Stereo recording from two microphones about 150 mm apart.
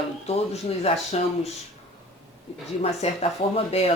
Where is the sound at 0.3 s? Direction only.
45° left (ahead or behind).